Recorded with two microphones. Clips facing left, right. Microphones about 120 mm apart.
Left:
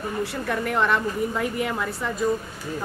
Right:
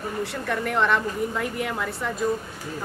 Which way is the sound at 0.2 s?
5° left (ahead or behind).